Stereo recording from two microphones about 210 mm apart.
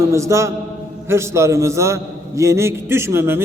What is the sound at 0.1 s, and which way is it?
A man's voice, 15° right (ahead or behind).